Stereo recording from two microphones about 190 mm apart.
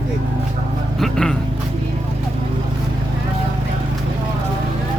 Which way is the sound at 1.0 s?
5° left (ahead or behind).